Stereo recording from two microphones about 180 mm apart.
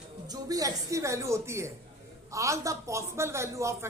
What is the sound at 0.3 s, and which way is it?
A woman's voice, 20° right (ahead or behind).